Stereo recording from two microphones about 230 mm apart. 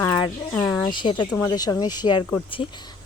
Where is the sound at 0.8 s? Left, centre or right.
Centre.